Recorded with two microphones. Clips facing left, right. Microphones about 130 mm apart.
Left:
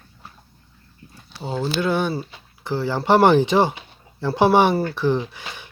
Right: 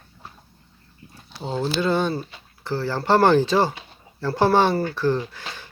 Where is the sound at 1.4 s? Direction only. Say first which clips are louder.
Even; centre (ahead or behind).